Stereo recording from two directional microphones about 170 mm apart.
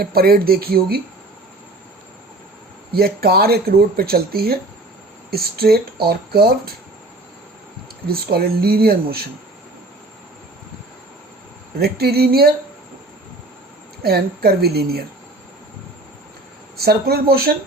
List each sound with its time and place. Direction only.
0.0 s speech: 65° right (ahead or behind)
2.9 s speech: 65° right (ahead or behind)
8.0 s speech: 65° right (ahead or behind)
11.8 s speech: 70° right (ahead or behind)
14.0 s speech: 65° right (ahead or behind)
16.8 s speech: 65° right (ahead or behind)